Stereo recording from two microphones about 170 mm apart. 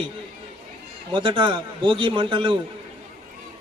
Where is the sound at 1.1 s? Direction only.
30° right (ahead or behind).